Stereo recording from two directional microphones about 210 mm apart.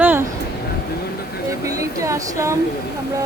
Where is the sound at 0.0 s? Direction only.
10° right (ahead or behind).